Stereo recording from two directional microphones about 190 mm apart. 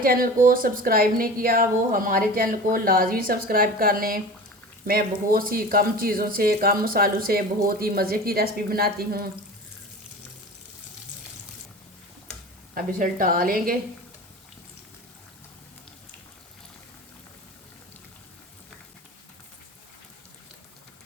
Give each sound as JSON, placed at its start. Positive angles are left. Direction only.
{"t": 0.0, "sound": "speech", "side_deg": -50}
{"t": 12.7, "sound": "speech", "side_deg": -50}